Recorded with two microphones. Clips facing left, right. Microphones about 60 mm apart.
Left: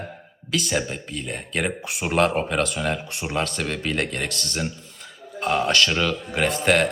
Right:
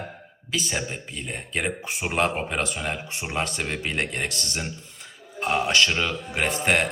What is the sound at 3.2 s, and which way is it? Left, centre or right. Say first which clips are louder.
Speech: left 2 dB; right.